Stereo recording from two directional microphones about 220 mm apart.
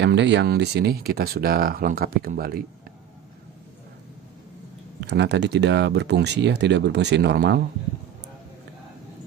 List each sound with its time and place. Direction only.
0.0 s speech: 55° right (ahead or behind)
5.0 s speech: 50° right (ahead or behind)